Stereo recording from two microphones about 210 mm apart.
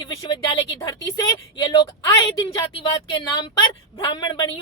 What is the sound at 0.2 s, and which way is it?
Speech, 25° left (ahead or behind).